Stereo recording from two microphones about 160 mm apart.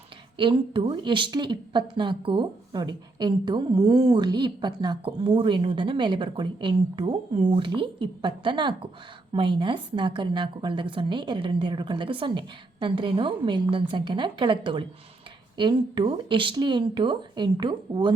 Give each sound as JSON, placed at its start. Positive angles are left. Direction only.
{"t": 0.3, "sound": "a woman's voice", "side_deg": -30}